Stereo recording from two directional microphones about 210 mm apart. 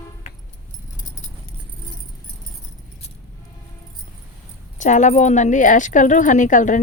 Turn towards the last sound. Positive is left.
turn(degrees=35)  # may be behind; listen again after turning